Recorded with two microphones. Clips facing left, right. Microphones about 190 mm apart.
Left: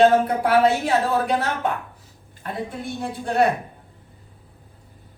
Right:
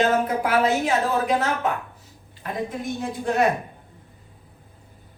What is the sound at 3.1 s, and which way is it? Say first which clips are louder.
Speech: left 1 dB; 35° left (ahead or behind).